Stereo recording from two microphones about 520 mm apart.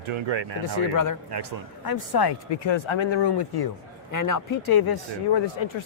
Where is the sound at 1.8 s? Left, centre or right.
Left.